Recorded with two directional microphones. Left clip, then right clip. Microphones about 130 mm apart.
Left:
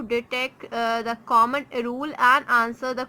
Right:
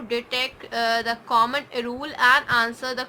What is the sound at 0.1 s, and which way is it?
A woman's voice, 45° left (ahead or behind).